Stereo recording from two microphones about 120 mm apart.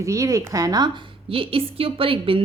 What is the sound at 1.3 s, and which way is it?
A woman's voice, 50° right (ahead or behind).